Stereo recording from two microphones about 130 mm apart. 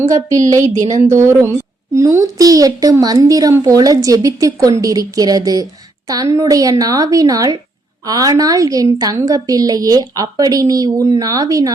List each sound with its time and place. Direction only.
0.5 s a woman's voice: 25° right (ahead or behind)